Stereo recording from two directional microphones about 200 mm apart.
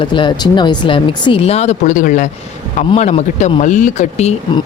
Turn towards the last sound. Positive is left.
turn(degrees=35)  # may be behind; listen again after turning